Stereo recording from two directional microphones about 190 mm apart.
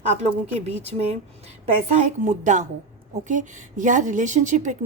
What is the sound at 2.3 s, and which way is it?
A woman's voice, 40° right (ahead or behind).